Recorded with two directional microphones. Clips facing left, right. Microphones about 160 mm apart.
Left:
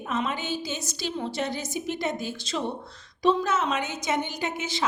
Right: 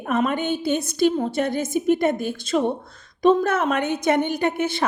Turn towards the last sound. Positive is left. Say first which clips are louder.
# right 8 dB
turn(degrees=-55)  # may be behind; listen again after turning